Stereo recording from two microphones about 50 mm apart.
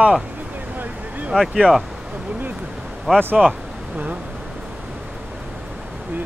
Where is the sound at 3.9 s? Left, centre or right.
Right.